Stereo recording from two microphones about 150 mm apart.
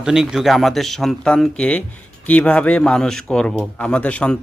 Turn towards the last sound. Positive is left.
turn(degrees=10)  # may be behind; listen again after turning